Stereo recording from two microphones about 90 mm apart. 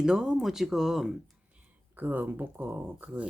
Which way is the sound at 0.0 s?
5° right (ahead or behind).